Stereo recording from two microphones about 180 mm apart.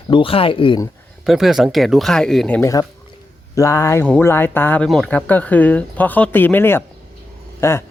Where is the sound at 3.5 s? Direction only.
15° left (ahead or behind).